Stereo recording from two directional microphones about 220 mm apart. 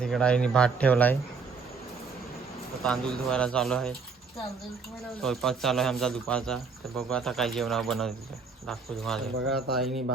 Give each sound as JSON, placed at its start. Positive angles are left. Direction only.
{"t": 0.0, "sound": "speech", "side_deg": 5}
{"t": 2.8, "sound": "speech", "side_deg": 5}
{"t": 5.2, "sound": "speech", "side_deg": 0}